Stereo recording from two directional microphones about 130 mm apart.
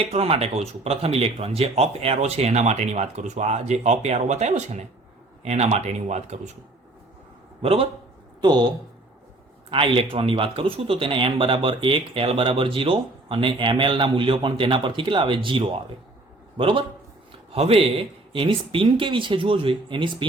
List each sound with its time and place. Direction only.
0.0 s speech: 50° right (ahead or behind)
7.6 s speech: 45° right (ahead or behind)
8.4 s speech: 35° right (ahead or behind)
9.6 s speech: 45° right (ahead or behind)